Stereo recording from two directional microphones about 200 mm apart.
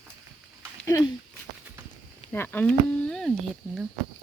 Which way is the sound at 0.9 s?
15° left (ahead or behind).